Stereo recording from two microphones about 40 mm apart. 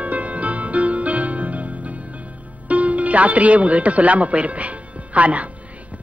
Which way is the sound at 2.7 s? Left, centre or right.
Right.